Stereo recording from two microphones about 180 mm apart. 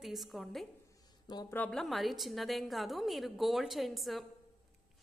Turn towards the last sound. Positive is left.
turn(degrees=0)  # may be behind; listen again after turning